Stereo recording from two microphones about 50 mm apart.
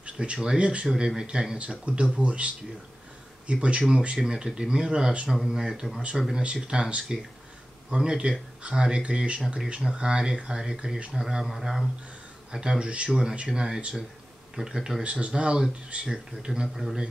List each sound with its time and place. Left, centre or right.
0.0 s speech: right
5.3 s speech: centre
6.4 s speech: centre
12.4 s speech: centre